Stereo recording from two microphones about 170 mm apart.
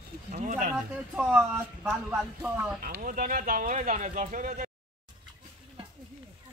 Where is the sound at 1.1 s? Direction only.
5° right (ahead or behind).